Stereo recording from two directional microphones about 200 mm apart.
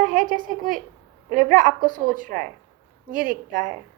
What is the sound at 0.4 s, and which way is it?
A woman's voice, 40° right (ahead or behind).